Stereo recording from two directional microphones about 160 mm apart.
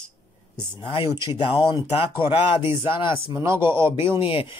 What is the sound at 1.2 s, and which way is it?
Speech, 30° left (ahead or behind).